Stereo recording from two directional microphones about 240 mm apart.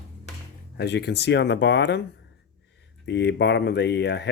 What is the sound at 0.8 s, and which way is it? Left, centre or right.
Speech, left.